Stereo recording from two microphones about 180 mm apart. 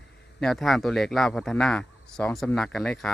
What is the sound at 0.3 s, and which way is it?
Speech, centre (ahead or behind).